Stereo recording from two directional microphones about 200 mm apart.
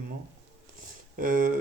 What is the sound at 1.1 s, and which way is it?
Speech, 40° right (ahead or behind).